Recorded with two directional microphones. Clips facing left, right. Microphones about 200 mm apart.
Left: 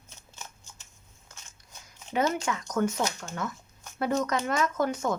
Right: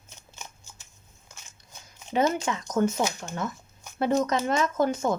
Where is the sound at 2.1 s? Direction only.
25° right (ahead or behind).